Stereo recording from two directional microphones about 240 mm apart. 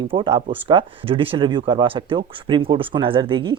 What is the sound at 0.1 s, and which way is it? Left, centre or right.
Speech, right.